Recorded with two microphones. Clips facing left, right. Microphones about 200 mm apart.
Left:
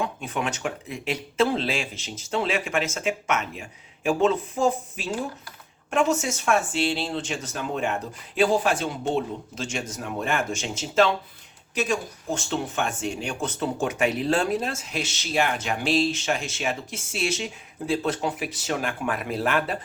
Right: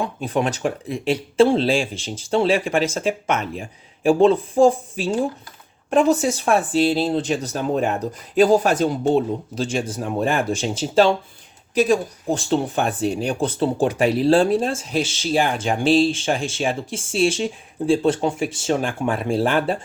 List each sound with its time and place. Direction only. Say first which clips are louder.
0.0 s speech: right 6 dB; 35° right (ahead or behind)